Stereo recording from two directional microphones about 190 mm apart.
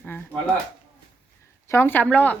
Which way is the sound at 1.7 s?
10° left (ahead or behind).